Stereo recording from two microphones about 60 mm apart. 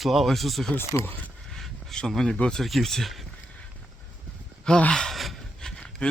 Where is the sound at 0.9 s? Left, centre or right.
Left.